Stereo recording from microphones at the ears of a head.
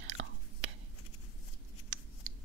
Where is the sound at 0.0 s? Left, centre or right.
Right.